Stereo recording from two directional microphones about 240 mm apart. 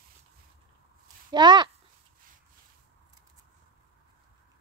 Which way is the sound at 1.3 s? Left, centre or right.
Centre.